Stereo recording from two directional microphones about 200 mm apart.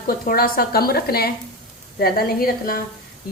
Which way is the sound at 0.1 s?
45° left (ahead or behind).